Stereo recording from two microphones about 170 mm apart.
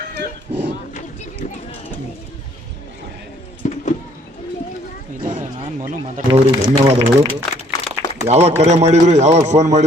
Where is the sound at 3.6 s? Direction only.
50° left (ahead or behind).